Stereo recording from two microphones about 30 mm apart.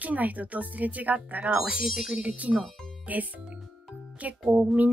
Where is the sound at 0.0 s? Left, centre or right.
Right.